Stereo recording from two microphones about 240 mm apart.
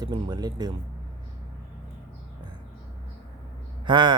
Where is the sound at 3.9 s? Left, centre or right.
Centre.